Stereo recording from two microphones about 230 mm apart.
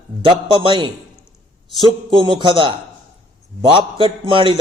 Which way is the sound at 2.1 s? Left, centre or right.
Right.